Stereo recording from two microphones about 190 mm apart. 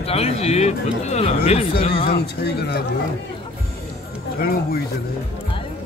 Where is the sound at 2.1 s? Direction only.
60° left (ahead or behind).